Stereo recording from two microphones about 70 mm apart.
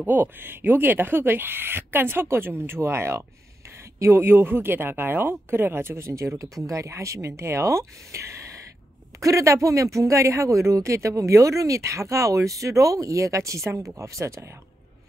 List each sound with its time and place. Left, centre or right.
0.0 s speech: right